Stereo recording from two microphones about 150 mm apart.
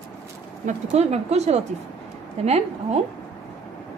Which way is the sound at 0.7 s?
45° right (ahead or behind).